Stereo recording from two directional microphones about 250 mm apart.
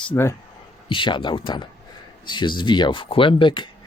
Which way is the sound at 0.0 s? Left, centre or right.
Centre.